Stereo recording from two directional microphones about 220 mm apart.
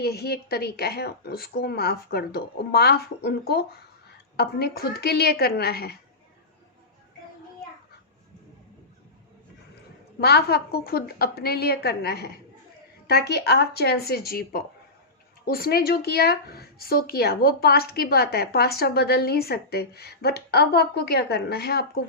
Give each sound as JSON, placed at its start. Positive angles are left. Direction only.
{"t": 0.0, "sound": "speech", "side_deg": 45}
{"t": 10.2, "sound": "speech", "side_deg": 45}